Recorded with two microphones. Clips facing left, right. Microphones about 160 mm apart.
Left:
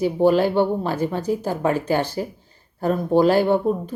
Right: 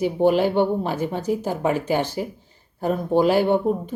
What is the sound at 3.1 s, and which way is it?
Speech, 15° right (ahead or behind).